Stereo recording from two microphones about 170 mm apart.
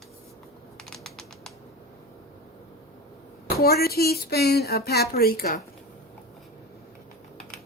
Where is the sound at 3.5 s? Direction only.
65° left (ahead or behind).